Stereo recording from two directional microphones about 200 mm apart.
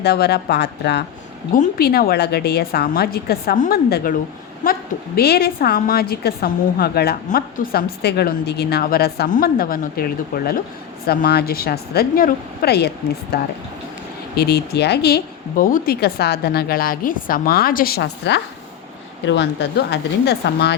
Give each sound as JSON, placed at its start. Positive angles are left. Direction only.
{"t": 0.0, "sound": "a woman's voice", "side_deg": 55}